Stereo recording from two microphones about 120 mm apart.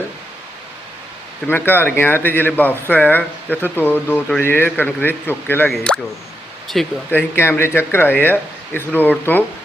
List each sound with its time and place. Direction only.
1.5 s speech: 15° left (ahead or behind); by 6.9 s centre (ahead or behind)
7.1 s speech: 20° left (ahead or behind)